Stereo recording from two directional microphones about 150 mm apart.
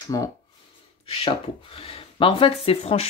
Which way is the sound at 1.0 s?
35° left (ahead or behind).